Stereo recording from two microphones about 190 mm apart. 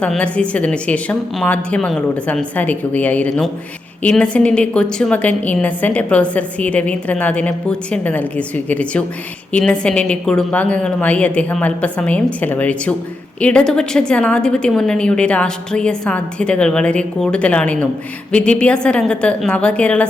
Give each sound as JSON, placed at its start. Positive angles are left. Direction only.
{"t": 0.0, "sound": "a woman's voice", "side_deg": 5}